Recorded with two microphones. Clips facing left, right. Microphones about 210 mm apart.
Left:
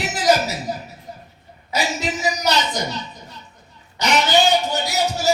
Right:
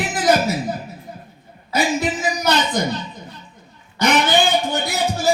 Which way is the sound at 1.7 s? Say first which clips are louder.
Right 4 dB; 55° right (ahead or behind).